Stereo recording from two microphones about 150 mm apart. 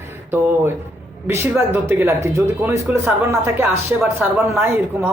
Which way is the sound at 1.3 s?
15° right (ahead or behind).